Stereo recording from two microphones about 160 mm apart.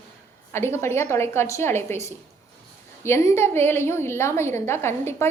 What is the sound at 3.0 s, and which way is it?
A woman's voice, 15° left (ahead or behind).